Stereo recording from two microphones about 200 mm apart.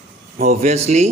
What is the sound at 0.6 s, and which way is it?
Speech, 35° right (ahead or behind).